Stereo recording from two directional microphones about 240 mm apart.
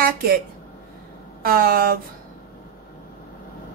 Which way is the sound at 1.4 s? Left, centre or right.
Right.